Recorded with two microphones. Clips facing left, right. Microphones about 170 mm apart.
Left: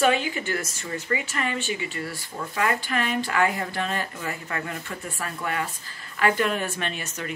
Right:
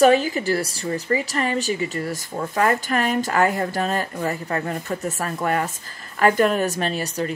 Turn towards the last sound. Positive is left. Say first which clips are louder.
# right 8 dB
turn(degrees=-35)  # may be behind; listen again after turning